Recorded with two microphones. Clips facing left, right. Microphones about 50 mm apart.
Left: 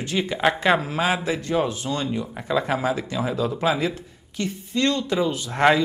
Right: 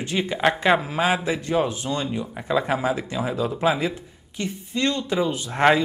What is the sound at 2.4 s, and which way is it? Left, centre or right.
Speech, centre.